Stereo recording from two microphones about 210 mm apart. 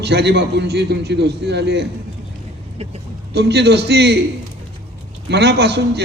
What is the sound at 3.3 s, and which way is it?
Speech, 50° right (ahead or behind).